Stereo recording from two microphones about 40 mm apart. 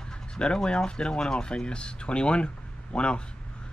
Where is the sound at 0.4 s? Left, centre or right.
Left.